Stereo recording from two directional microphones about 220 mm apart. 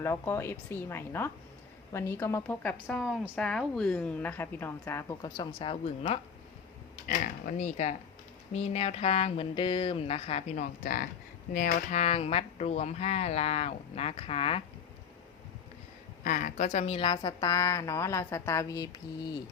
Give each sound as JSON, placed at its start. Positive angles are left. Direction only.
{"t": 0.0, "sound": "a woman's voice", "side_deg": 10}
{"t": 16.2, "sound": "a woman's voice", "side_deg": 35}